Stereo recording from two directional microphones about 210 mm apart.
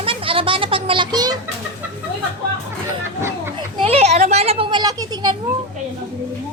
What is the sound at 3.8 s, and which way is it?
Children playing, 30° right (ahead or behind).